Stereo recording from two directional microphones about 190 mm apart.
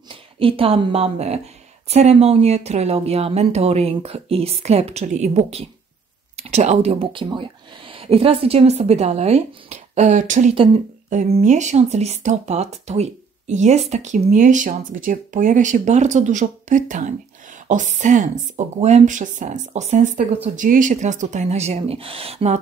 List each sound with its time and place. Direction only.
0.1 s a woman's voice: 30° right (ahead or behind)